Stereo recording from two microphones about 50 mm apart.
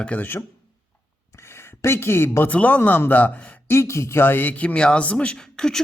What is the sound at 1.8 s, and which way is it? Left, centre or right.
Speech, left.